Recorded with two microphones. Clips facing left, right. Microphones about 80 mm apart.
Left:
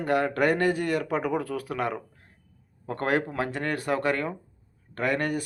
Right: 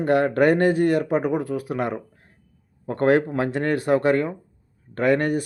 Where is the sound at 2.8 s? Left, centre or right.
Right.